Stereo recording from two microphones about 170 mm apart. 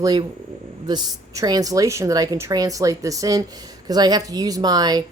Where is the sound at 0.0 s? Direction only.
25° right (ahead or behind).